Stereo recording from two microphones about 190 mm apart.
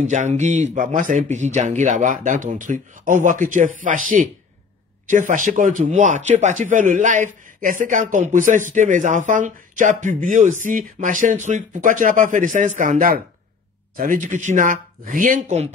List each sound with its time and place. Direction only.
0.0 s speech: 40° right (ahead or behind)